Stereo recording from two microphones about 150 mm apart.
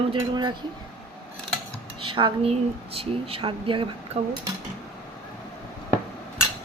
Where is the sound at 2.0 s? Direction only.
35° right (ahead or behind).